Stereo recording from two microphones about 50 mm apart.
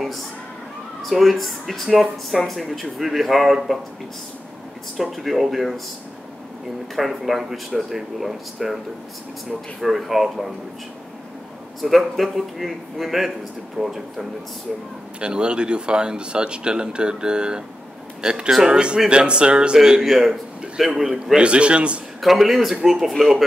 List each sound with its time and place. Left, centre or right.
1.0 s speech: centre
4.9 s speech: centre
7.0 s speech: centre
9.8 s speech: centre
11.8 s speech: centre
15.1 s speech: centre
21.4 s speech: right
22.2 s speech: centre